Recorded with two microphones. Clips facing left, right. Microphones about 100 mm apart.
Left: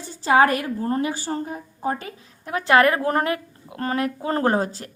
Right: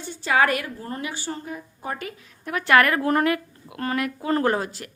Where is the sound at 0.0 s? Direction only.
35° left (ahead or behind).